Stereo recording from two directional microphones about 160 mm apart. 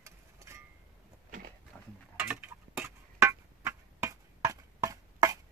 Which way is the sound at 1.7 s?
10° left (ahead or behind).